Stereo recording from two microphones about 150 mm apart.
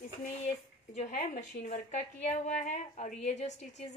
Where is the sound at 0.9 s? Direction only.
50° left (ahead or behind).